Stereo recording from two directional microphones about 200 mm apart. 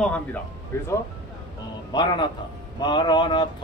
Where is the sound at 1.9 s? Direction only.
20° left (ahead or behind).